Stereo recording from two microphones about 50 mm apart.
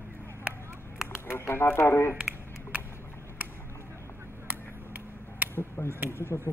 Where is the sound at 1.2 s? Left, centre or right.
Left.